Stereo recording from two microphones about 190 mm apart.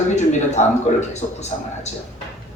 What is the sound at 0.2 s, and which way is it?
Speech, 35° left (ahead or behind).